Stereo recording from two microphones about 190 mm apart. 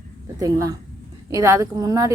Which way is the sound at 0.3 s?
15° right (ahead or behind).